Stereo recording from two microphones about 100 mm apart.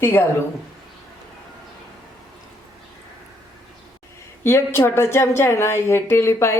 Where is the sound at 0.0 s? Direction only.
25° left (ahead or behind).